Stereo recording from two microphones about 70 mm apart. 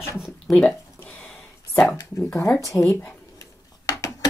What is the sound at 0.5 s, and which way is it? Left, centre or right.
Speech, centre.